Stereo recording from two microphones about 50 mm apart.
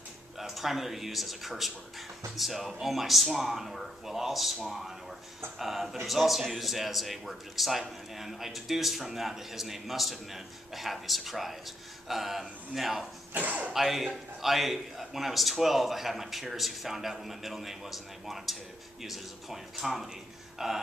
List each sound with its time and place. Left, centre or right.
0.4 s a man's voice: centre
13.3 s speech: right
13.7 s a man's voice: centre
20.5 s a sound: centre